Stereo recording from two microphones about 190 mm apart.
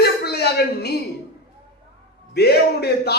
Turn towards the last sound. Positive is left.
turn(degrees=60)  # may be behind; listen again after turning